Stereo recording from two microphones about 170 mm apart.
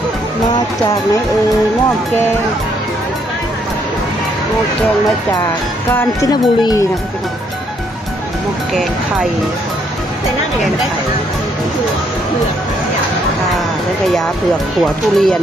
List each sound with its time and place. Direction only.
5.9 s speech: 20° left (ahead or behind)
14.8 s speech: centre (ahead or behind)